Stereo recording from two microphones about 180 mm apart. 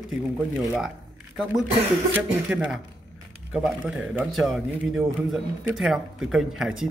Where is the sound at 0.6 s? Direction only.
5° right (ahead or behind).